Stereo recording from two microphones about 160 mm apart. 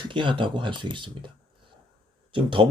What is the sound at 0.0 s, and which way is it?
Speech, 30° right (ahead or behind).